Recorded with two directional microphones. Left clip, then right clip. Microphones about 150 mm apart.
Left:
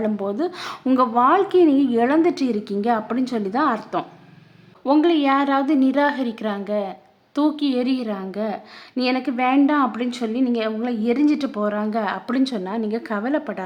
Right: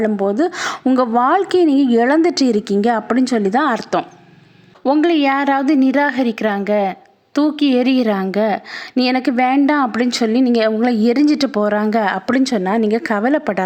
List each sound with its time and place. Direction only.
0.0 s a woman's voice: 30° right (ahead or behind)